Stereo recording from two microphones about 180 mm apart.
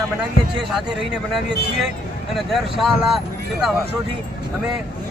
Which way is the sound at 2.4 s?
Centre (ahead or behind).